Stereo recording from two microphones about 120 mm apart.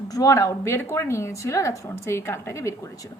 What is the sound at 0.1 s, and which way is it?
A woman's voice, 30° left (ahead or behind).